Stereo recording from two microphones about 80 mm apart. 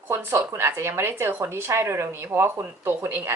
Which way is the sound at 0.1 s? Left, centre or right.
Right.